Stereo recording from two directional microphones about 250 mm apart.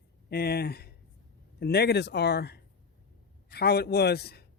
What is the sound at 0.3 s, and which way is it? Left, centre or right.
A man's voice, left.